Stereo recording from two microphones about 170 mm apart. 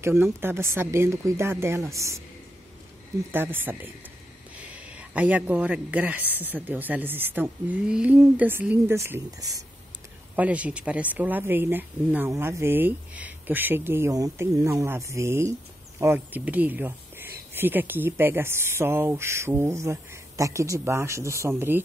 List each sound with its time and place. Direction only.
0.0 s speech: 15° right (ahead or behind)
3.3 s speech: 10° right (ahead or behind)
10.3 s speech: 10° right (ahead or behind)